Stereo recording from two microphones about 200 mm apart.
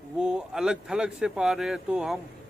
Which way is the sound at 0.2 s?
5° right (ahead or behind).